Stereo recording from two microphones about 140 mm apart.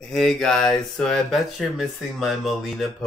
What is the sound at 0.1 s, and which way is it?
Speech, centre (ahead or behind).